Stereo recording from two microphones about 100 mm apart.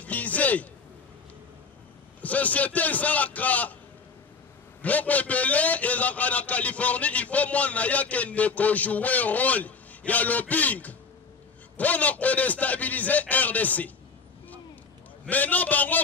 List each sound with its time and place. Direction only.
0.0 s a sound: 15° left (ahead or behind)
2.2 s a man's voice: 15° left (ahead or behind)
4.8 s a man's voice: 15° left (ahead or behind)
15.2 s a man's voice: 15° left (ahead or behind)